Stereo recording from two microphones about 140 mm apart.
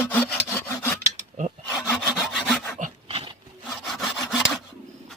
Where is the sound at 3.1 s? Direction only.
40° right (ahead or behind).